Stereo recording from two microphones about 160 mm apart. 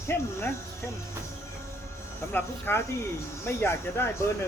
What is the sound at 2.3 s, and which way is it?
Speech, 10° left (ahead or behind).